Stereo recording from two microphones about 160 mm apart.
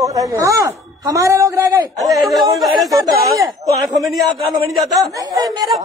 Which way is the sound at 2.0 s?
Centre (ahead or behind).